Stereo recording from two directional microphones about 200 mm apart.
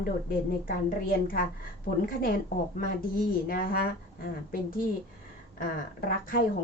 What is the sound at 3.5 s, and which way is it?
Speech, 45° left (ahead or behind).